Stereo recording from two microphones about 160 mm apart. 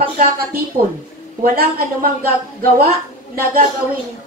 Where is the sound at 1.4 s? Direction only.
65° right (ahead or behind).